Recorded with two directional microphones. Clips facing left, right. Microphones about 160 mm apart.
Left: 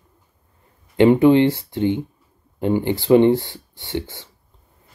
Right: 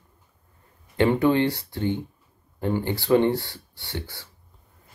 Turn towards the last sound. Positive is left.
turn(degrees=20)  # may be behind; listen again after turning